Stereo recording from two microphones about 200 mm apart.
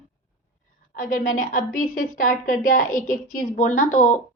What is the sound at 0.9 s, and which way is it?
A woman's voice, 45° left (ahead or behind).